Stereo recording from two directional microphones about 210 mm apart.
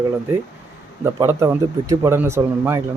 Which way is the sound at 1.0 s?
10° right (ahead or behind).